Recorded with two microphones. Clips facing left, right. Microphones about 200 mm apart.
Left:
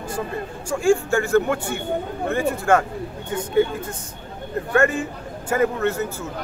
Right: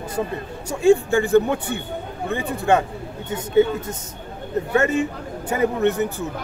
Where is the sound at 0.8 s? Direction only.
20° right (ahead or behind).